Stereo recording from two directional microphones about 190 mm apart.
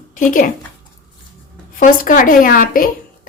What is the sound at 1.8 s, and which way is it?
A woman's voice, 45° left (ahead or behind).